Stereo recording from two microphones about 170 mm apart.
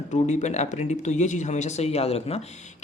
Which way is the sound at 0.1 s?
45° left (ahead or behind).